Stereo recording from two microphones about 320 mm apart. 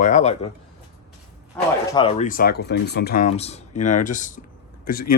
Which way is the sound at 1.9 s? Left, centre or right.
Centre.